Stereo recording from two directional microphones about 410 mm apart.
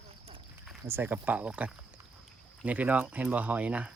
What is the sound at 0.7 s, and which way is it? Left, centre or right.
Speech, centre.